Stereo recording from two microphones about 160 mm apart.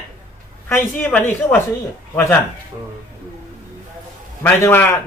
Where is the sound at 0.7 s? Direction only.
10° left (ahead or behind).